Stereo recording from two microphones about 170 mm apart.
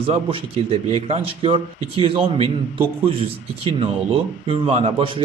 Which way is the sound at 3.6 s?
35° right (ahead or behind).